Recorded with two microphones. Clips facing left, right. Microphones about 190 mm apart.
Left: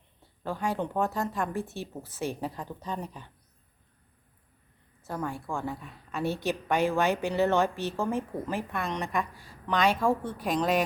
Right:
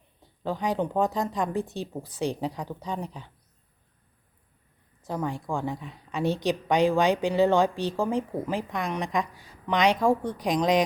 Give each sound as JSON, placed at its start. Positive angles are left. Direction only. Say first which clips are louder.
{"t": 0.4, "sound": "a woman's voice", "louder": "right 3 dB", "side_deg": -20}
{"t": 5.0, "sound": "a woman's voice", "louder": "right 3 dB", "side_deg": -15}